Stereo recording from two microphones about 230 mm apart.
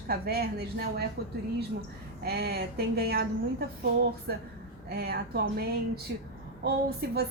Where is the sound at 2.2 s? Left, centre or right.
Right.